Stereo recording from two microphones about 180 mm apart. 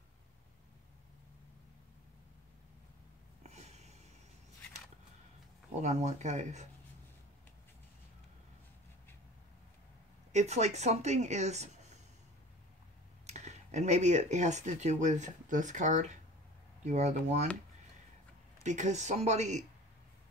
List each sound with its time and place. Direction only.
3.4 s snort: 40° right (ahead or behind)
5.8 s speech: 40° right (ahead or behind)
10.3 s speech: 40° right (ahead or behind)
13.3 s speech: 40° right (ahead or behind)
18.6 s speech: 40° right (ahead or behind)